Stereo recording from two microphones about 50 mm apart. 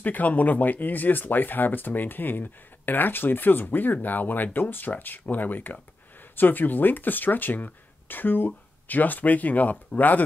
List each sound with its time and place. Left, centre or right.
0.0 s speech: left